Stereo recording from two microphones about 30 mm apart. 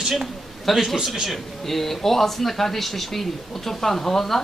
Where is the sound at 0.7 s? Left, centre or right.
Centre.